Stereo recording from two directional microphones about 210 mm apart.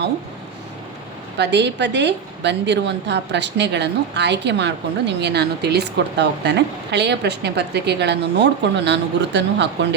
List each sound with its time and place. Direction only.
1.4 s a woman's voice: 55° right (ahead or behind)